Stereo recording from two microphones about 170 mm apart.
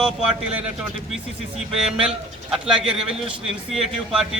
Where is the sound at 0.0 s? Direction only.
5° right (ahead or behind).